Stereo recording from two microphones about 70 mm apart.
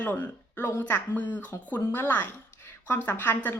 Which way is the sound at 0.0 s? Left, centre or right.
Left.